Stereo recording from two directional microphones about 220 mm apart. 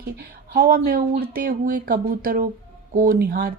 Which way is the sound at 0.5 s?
40° right (ahead or behind).